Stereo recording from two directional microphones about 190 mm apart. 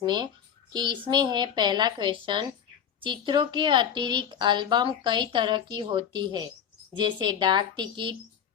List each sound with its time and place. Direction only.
0.0 s a woman's voice: 20° right (ahead or behind)